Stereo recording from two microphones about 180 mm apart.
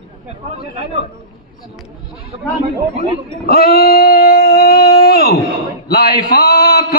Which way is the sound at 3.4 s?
65° left (ahead or behind).